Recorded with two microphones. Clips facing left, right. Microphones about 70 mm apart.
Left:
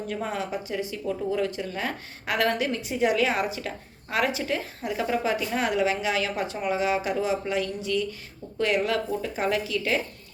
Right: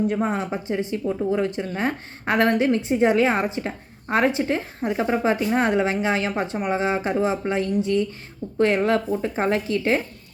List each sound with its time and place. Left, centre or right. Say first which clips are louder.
0.1 s speech: right 6 dB; right